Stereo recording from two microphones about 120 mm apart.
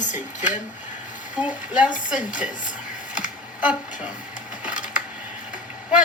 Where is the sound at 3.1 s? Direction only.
10° right (ahead or behind).